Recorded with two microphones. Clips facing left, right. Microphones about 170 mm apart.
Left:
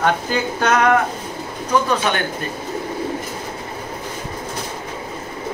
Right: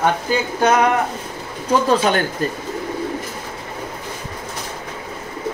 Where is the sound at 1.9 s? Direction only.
35° right (ahead or behind).